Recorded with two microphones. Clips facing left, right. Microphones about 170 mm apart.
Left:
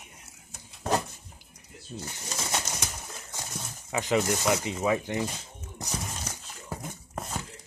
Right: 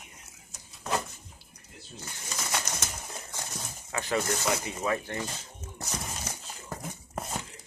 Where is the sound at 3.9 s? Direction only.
15° left (ahead or behind).